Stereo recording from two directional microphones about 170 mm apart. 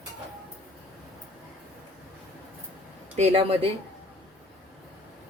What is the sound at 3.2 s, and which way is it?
Speech, 35° right (ahead or behind).